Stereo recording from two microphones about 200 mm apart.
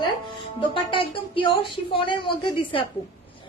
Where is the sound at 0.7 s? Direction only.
25° left (ahead or behind).